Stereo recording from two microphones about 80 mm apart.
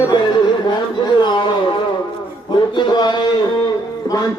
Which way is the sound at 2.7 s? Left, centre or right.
Left.